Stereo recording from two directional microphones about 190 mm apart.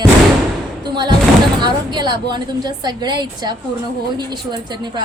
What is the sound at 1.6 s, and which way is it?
A woman's voice, 25° right (ahead or behind).